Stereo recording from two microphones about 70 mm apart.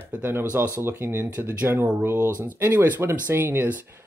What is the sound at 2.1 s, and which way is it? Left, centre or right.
Speech, right.